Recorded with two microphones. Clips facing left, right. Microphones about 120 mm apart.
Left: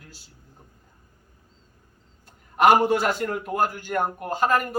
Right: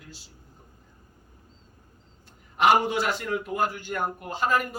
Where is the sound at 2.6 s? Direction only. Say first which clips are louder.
Left 4 dB; 50° left (ahead or behind).